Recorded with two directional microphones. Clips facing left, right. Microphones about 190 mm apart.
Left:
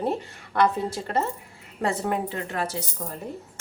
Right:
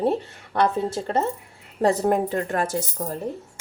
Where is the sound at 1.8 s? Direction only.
40° right (ahead or behind).